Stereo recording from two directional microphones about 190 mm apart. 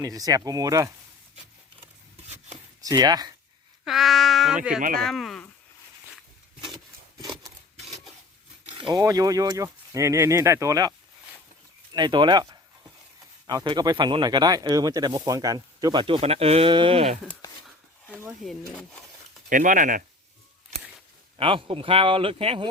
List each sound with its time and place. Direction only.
0.0 s speech: 20° right (ahead or behind)
2.8 s speech: 20° right (ahead or behind)
3.8 s speech: centre (ahead or behind)
8.6 s a sound: 30° right (ahead or behind)
9.0 s speech: 20° right (ahead or behind)
11.9 s speech: 25° right (ahead or behind)
13.7 s speech: 25° right (ahead or behind)
18.2 s speech: 5° right (ahead or behind)
19.5 s speech: 45° right (ahead or behind)
21.3 s speech: 30° right (ahead or behind)